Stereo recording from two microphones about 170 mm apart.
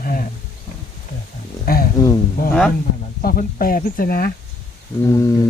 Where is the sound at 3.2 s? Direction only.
60° left (ahead or behind).